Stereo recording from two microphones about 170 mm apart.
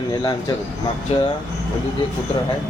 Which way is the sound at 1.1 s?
35° left (ahead or behind).